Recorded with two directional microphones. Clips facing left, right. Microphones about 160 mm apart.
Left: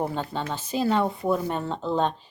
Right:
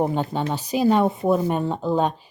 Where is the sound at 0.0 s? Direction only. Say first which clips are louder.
Right 6 dB; 15° right (ahead or behind).